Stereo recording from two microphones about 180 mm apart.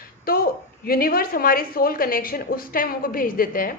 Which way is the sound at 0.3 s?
55° left (ahead or behind).